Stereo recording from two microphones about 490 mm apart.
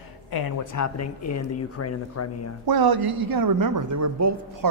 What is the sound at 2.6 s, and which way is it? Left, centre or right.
A woman's voice, right.